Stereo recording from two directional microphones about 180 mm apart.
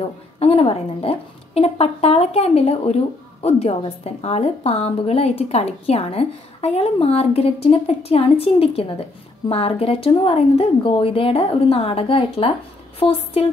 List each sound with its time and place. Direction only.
0.4 s a woman's voice: 35° left (ahead or behind)